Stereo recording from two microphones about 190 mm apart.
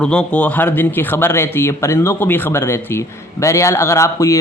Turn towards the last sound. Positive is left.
turn(degrees=15)  # may be behind; listen again after turning